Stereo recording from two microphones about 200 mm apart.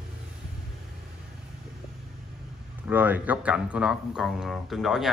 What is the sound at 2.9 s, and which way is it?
Speech, 10° right (ahead or behind).